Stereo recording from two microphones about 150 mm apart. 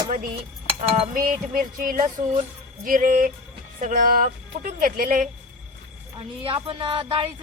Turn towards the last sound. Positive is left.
turn(degrees=-35)  # may be behind; listen again after turning